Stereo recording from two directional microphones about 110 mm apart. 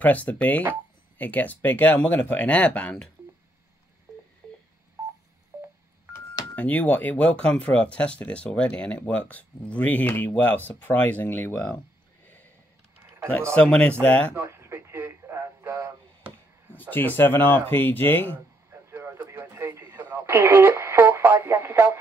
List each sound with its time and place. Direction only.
0.0 s speech: 15° left (ahead or behind)
5.5 s telephone dialing: 25° right (ahead or behind)
6.5 s speech: 15° left (ahead or behind)
13.6 s speech: 10° left (ahead or behind)
14.3 s radio: 25° right (ahead or behind)
16.9 s speech: 20° left (ahead or behind)
18.7 s radio: 25° right (ahead or behind)